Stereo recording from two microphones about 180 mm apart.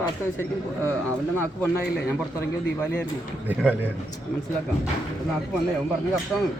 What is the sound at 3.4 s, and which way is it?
Speech, 10° right (ahead or behind).